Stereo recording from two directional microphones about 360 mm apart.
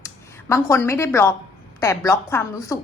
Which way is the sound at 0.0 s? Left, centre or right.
Centre.